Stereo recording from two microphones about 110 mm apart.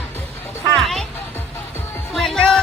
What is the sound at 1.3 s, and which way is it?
Music, 20° left (ahead or behind).